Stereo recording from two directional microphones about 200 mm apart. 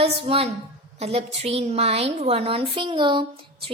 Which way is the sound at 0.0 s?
25° right (ahead or behind).